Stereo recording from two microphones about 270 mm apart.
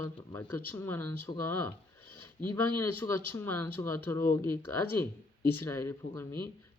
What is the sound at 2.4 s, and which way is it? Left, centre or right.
Speech, centre.